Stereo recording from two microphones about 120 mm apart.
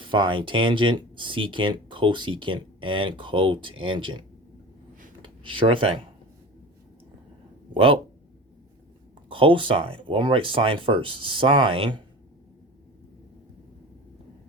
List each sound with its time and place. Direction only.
0.0 s speech: 45° right (ahead or behind)
7.7 s speech: 45° right (ahead or behind)
9.3 s speech: 45° right (ahead or behind)